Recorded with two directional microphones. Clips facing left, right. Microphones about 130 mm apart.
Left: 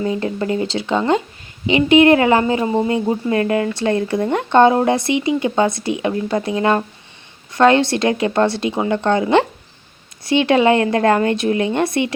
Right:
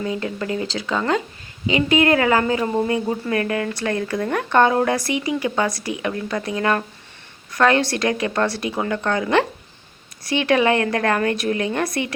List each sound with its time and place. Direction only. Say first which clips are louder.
0.0 s speech: left 5 dB; 30° left (ahead or behind)